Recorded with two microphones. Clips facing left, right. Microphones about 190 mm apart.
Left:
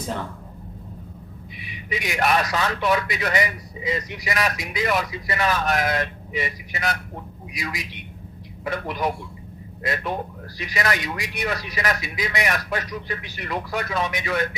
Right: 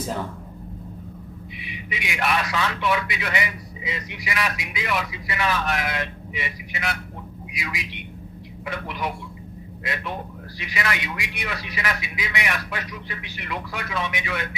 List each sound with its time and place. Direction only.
1.6 s a man's voice: 40° left (ahead or behind)